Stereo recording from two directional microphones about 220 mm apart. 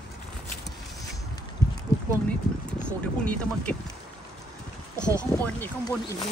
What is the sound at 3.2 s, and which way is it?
Speech, 5° left (ahead or behind).